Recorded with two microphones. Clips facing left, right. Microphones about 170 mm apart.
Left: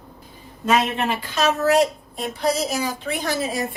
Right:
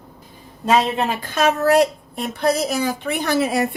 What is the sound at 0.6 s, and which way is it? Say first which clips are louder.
A woman's voice: right 2 dB; 35° right (ahead or behind).